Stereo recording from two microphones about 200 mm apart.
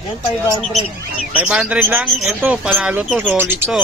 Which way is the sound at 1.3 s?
5° right (ahead or behind).